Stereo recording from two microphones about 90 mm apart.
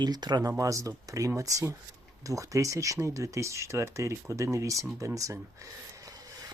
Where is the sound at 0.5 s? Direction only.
35° right (ahead or behind).